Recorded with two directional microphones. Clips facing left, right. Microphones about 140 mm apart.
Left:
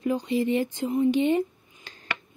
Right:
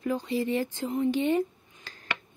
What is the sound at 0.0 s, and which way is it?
Speech, 20° left (ahead or behind).